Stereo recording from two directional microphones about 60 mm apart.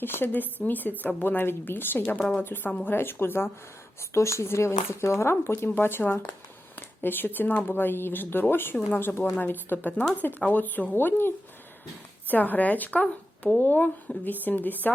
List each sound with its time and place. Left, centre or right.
0.0 s speech: left
4.1 s speech: left
12.3 s speech: left